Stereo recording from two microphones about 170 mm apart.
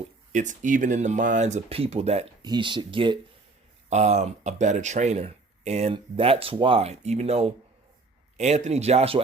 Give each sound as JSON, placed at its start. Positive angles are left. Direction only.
{"t": 0.3, "sound": "speech", "side_deg": -50}
{"t": 2.4, "sound": "speech", "side_deg": -25}
{"t": 3.8, "sound": "speech", "side_deg": -40}